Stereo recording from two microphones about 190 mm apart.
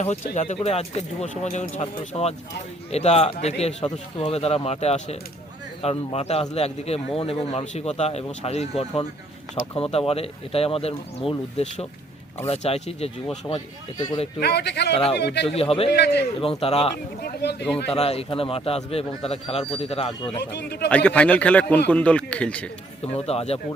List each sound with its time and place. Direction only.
0.0 s a man's voice: 35° left (ahead or behind)
13.5 s a man's voice: 10° left (ahead or behind)
14.3 s a man's voice: 60° left (ahead or behind)
15.4 s a man's voice: 30° left (ahead or behind)
15.9 s a man's voice: 60° left (ahead or behind)
16.4 s a man's voice: 30° left (ahead or behind)
17.2 s a man's voice: 60° left (ahead or behind)
17.9 s a man's voice: 30° left (ahead or behind)
20.4 s a man's voice: 60° left (ahead or behind)
20.9 s a man's voice: 5° left (ahead or behind)
23.1 s a man's voice: 30° left (ahead or behind)